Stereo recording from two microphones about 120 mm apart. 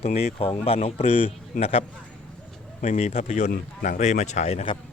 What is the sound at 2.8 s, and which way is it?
Speech, 80° left.